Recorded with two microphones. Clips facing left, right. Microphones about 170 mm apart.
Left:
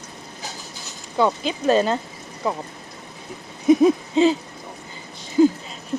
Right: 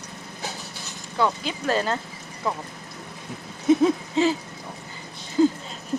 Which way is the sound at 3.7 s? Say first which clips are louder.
Left 4 dB; 15° left (ahead or behind).